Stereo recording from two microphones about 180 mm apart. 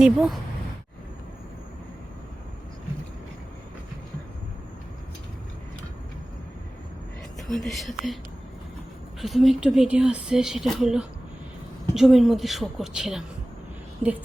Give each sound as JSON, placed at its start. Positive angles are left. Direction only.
{"t": 0.0, "sound": "speech", "side_deg": 0}
{"t": 7.4, "sound": "speech", "side_deg": 0}
{"t": 9.2, "sound": "speech", "side_deg": 0}